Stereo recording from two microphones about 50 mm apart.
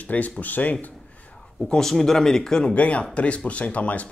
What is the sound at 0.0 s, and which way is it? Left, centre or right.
Speech, left.